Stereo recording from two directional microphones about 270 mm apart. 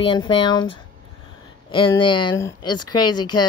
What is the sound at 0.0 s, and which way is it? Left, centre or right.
Speech, centre.